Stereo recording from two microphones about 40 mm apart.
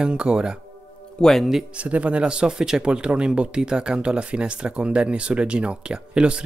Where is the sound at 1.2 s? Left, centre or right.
Left.